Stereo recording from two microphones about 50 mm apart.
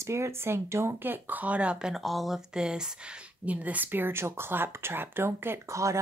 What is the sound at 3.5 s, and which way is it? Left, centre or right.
A woman's voice, right.